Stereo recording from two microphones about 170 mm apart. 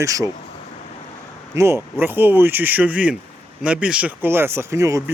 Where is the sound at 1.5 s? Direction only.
15° right (ahead or behind).